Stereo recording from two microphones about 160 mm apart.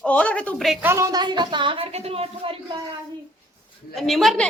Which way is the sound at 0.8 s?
20° right (ahead or behind).